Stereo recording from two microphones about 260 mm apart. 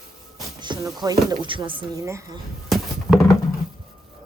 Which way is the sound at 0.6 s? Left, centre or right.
Centre.